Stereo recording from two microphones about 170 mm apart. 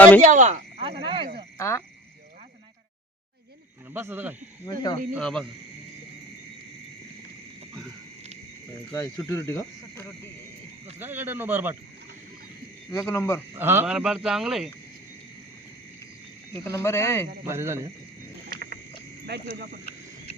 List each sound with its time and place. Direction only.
0.2 s speech: 45° right (ahead or behind)
0.9 s speech: 30° right (ahead or behind)
1.5 s speech: 15° left (ahead or behind)
3.9 s speech: 10° right (ahead or behind)
4.7 s speech: 25° left (ahead or behind)
5.1 s speech: 5° left (ahead or behind)
8.9 s speech: 15° left (ahead or behind)
11.0 s speech: 10° right (ahead or behind)
12.9 s speech: 15° left (ahead or behind)
13.6 s speech: 15° right (ahead or behind)
16.6 s speech: 15° left (ahead or behind)
17.4 s speech: 15° right (ahead or behind)
18.4 s a sound: 80° right
19.2 s speech: 75° right (ahead or behind)